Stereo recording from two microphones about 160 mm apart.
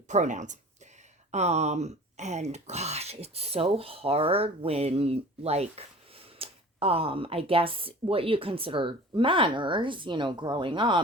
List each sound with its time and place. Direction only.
0.1 s speech: 50° right (ahead or behind); by 11.0 s 30° right (ahead or behind)